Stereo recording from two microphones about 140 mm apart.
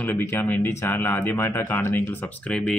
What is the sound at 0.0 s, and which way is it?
Speech, 15° left (ahead or behind).